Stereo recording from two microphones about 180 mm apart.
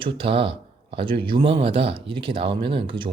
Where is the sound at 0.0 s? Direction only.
30° right (ahead or behind).